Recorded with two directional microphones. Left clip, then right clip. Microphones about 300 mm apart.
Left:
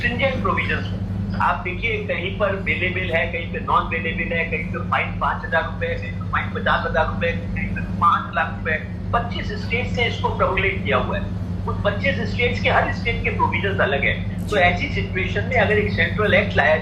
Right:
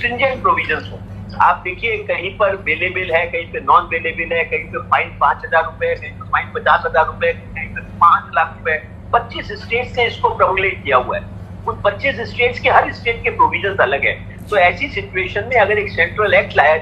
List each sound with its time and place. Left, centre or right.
0.0 s a man's voice: centre